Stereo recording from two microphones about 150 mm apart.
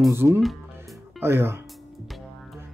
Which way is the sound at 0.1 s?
15° right (ahead or behind).